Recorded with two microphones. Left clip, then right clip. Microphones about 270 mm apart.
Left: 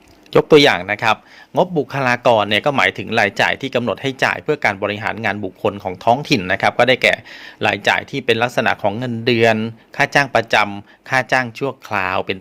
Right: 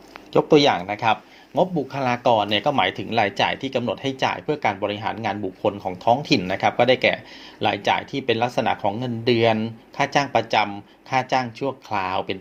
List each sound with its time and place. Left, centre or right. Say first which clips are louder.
0.3 s speech: left 6 dB; left